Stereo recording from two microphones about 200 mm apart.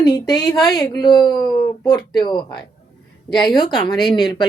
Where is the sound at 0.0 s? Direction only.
20° left (ahead or behind).